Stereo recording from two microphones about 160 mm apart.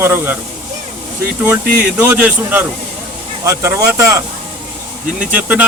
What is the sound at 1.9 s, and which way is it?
Speech, 10° right (ahead or behind).